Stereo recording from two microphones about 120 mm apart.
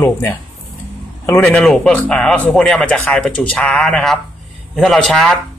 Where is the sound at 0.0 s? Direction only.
15° left (ahead or behind).